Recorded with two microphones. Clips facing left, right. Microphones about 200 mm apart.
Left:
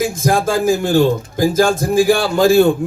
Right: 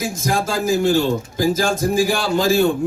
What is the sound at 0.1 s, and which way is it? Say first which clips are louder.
A man's voice: left 5 dB; 55° left (ahead or behind).